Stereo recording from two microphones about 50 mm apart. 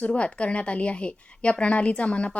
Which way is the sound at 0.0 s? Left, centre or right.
Left.